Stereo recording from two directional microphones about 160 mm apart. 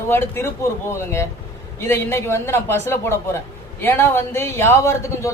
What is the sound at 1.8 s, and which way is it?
A man's voice, 15° left (ahead or behind).